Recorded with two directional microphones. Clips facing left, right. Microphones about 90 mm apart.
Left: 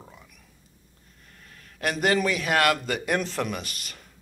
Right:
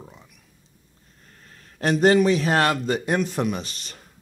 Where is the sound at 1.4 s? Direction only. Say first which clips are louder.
Right 3 dB; 35° right (ahead or behind).